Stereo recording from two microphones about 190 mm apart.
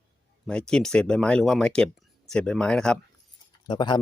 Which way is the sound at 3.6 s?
25° left (ahead or behind).